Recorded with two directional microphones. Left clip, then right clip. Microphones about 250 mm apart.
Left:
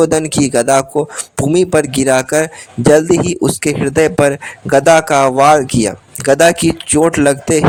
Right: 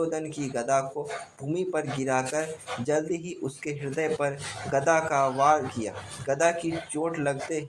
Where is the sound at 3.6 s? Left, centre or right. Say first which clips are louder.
Left 16 dB; left.